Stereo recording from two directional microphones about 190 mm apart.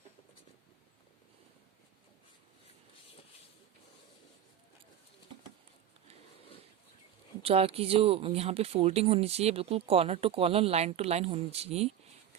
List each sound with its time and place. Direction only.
7.4 s speech: 30° right (ahead or behind)